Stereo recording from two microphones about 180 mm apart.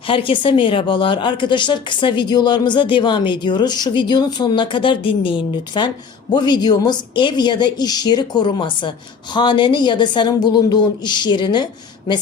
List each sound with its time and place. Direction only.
0.1 s a woman's voice: 30° left (ahead or behind)